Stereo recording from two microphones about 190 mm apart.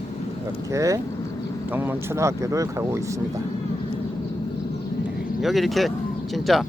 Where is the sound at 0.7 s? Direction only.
15° right (ahead or behind).